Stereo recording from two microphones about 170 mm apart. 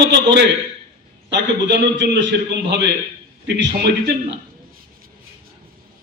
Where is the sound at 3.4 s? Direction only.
80° right.